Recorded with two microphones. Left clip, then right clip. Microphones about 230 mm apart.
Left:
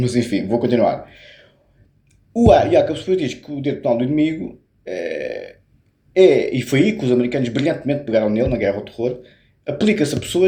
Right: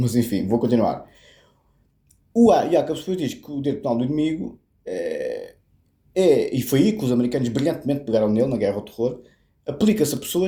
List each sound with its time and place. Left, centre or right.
0.0 s speech: right
2.4 s speech: right